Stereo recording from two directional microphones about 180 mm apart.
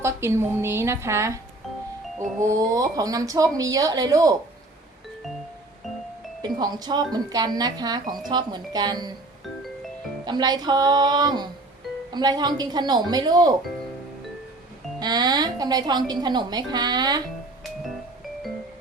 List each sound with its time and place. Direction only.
0.0 s a woman's voice: 15° right (ahead or behind)
2.6 s a woman's voice: 20° right (ahead or behind)
6.4 s a woman's voice: 20° right (ahead or behind)
10.2 s a woman's voice: 25° right (ahead or behind)
14.9 s a woman's voice: 20° right (ahead or behind)